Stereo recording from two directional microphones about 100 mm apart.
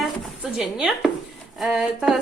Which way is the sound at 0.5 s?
5° right (ahead or behind).